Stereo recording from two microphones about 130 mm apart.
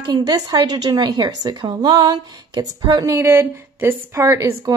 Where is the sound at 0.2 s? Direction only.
30° right (ahead or behind).